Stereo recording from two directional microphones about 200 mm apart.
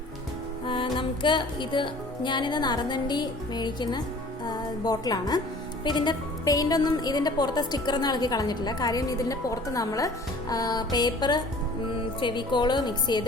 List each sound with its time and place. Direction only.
0.6 s speech: 25° left (ahead or behind)